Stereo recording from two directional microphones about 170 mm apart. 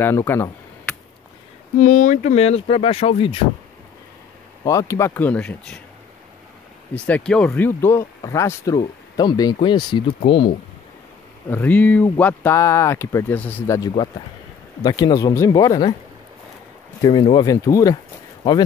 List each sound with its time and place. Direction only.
0.0 s a sound: 15° left (ahead or behind)
1.8 s speech: 50° left (ahead or behind); by 3.4 s 30° left (ahead or behind)
4.6 s speech: 20° left (ahead or behind)
6.9 s speech: 10° left (ahead or behind); by 10.1 s 25° left (ahead or behind)
11.5 s speech: 10° left (ahead or behind)
17.0 s speech: 25° left (ahead or behind)